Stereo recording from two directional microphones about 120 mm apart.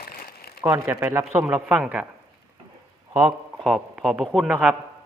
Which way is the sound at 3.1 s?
30° right (ahead or behind).